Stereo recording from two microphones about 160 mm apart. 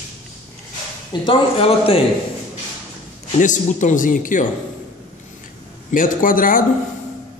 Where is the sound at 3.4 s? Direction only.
50° left (ahead or behind).